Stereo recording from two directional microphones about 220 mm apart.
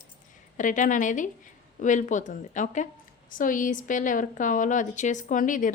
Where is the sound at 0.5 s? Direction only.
35° left (ahead or behind).